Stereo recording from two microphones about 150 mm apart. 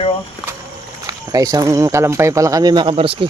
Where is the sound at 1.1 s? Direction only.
25° right (ahead or behind).